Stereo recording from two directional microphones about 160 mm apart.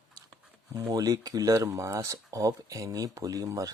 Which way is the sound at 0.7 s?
20° right (ahead or behind).